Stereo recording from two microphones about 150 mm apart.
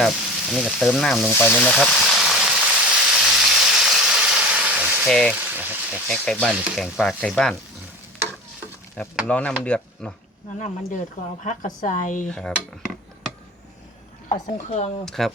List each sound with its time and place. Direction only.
0.0 s frying: centre (ahead or behind)
1.3 s sizzle: 15° left (ahead or behind); by 5.0 s 10° right (ahead or behind)
5.0 s frying: 5° left (ahead or behind)
5.3 s speech: 10° right (ahead or behind)
6.1 s frying: 5° left (ahead or behind)
9.2 s speech: 10° left (ahead or behind)
11.4 s speech: 60° left (ahead or behind)
12.3 s dishes: 5° left (ahead or behind)
14.4 s speech: 45° left (ahead or behind)
15.0 s frying: centre (ahead or behind)